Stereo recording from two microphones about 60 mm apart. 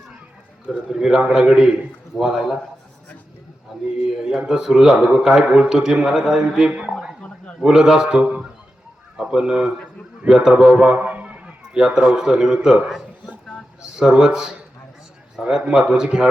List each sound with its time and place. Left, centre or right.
0.9 s a man's voice: centre
4.2 s a man's voice: centre
6.6 s a man's voice: centre
8.2 s speech: right
9.1 s a man's voice: centre
11.7 s a man's voice: centre